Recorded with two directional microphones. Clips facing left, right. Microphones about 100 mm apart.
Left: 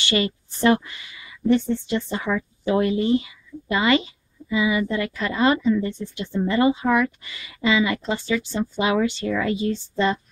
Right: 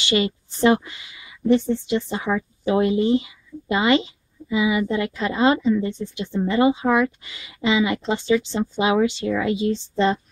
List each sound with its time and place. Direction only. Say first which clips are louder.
0.0 s speech: right 2 dB; 20° right (ahead or behind)